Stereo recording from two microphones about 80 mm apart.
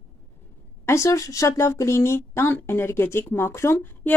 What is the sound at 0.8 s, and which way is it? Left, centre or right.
Speech, left.